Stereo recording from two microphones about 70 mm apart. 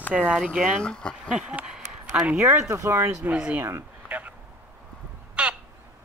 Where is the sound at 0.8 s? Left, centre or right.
Centre.